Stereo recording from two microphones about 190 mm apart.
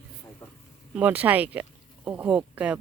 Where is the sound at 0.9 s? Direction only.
10° right (ahead or behind).